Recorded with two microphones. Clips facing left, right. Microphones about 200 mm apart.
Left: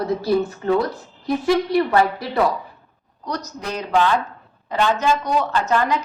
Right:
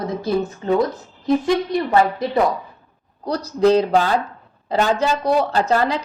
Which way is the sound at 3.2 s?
30° right (ahead or behind).